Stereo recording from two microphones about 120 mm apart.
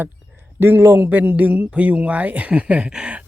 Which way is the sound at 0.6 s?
20° right (ahead or behind).